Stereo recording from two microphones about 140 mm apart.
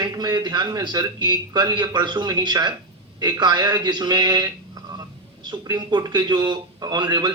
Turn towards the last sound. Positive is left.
turn(degrees=-30)  # may be behind; listen again after turning